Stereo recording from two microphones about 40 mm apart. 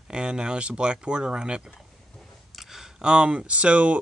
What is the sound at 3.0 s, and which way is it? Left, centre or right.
Speech, right.